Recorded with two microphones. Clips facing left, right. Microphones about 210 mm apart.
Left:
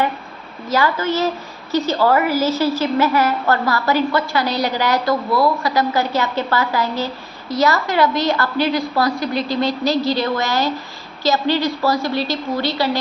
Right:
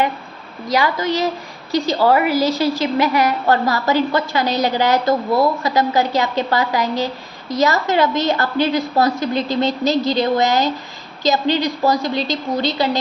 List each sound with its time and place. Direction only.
0.7 s a woman's voice: 15° right (ahead or behind)